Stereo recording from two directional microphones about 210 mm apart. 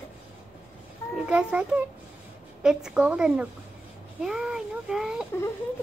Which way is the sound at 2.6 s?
5° right (ahead or behind).